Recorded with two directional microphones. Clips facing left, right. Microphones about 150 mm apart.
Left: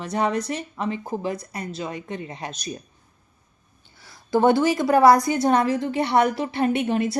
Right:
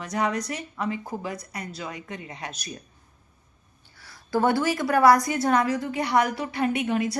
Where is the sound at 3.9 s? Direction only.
20° left (ahead or behind).